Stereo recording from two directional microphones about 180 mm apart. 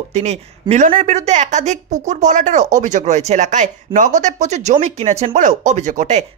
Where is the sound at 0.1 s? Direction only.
35° right (ahead or behind).